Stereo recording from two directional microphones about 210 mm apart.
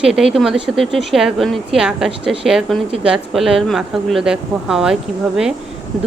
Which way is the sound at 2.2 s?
25° right (ahead or behind).